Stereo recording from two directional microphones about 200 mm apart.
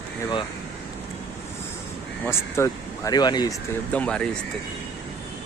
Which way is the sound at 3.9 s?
5° left (ahead or behind).